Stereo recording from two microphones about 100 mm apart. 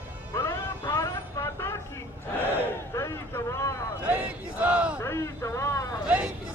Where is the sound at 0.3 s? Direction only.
30° left (ahead or behind).